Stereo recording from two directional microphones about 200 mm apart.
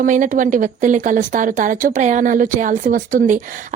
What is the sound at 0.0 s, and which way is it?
Speech, 40° right (ahead or behind).